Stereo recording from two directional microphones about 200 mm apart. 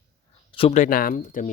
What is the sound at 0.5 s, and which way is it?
Speech, 35° left (ahead or behind).